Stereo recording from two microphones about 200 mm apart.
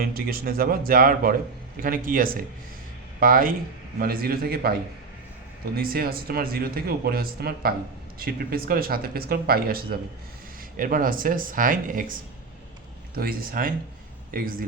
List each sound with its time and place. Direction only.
0.0 s speech: 50° right (ahead or behind)
5.7 s speech: 50° right (ahead or behind)
13.1 s speech: 45° right (ahead or behind)